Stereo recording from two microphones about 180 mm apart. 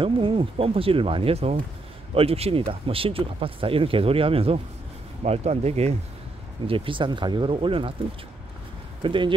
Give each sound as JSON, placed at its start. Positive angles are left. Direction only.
{"t": 0.0, "sound": "speech", "side_deg": -30}
{"t": 9.0, "sound": "speech", "side_deg": -25}